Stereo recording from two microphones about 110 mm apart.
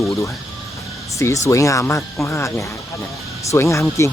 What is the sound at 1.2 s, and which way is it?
Speech, 25° left (ahead or behind).